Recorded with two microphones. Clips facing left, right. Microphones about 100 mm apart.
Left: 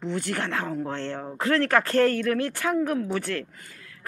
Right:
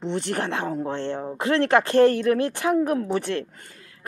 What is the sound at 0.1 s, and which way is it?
Speech, 30° right (ahead or behind).